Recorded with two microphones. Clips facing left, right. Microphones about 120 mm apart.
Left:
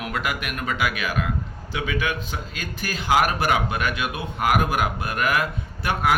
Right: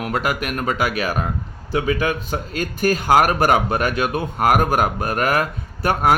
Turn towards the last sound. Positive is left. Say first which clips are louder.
# right 5 dB
turn(degrees=-45)  # may be behind; listen again after turning